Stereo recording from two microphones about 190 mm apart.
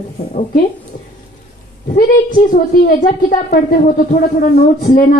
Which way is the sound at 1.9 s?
45° left (ahead or behind).